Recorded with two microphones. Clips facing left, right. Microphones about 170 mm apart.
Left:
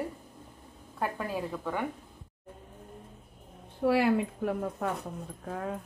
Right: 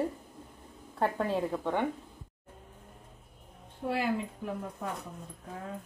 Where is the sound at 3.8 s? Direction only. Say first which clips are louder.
Left 6 dB; 70° left (ahead or behind).